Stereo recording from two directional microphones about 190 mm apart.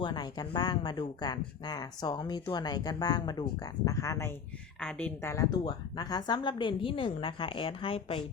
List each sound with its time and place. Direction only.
0.0 s speech: 25° left (ahead or behind)